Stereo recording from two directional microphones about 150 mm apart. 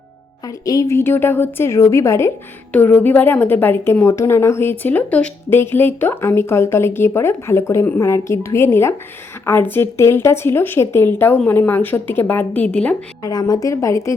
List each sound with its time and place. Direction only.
0.4 s a woman's voice: 25° left (ahead or behind)
13.2 s a woman's voice: 25° left (ahead or behind)